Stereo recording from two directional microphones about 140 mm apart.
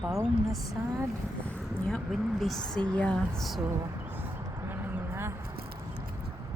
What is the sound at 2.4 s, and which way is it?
Speech, centre (ahead or behind).